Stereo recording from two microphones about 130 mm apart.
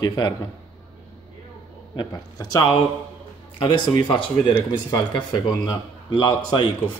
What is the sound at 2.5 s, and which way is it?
A man's voice, 35° left (ahead or behind).